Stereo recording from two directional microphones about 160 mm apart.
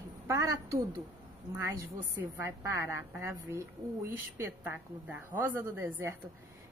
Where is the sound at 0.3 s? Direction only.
20° right (ahead or behind).